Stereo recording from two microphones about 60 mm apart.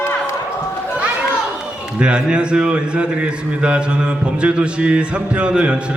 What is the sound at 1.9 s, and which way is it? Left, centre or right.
A man's voice, centre.